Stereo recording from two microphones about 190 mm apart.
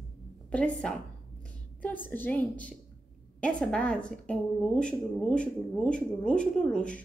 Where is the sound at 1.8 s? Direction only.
10° left (ahead or behind).